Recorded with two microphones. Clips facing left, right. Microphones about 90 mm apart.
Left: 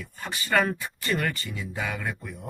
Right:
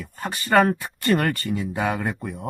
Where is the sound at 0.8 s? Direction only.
60° right (ahead or behind).